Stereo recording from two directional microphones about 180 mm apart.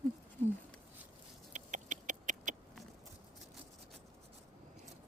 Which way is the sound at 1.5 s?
45° right (ahead or behind).